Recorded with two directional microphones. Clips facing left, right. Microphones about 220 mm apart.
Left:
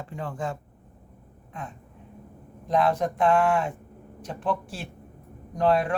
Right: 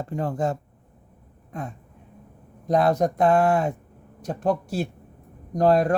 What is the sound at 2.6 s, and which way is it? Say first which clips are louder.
Speech: right 3 dB; 40° right (ahead or behind).